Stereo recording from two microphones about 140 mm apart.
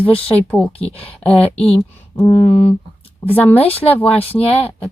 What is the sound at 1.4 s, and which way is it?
Speech, 45° left (ahead or behind).